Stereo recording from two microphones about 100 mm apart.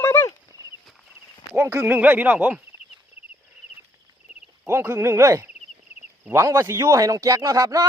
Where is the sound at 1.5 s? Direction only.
25° right (ahead or behind).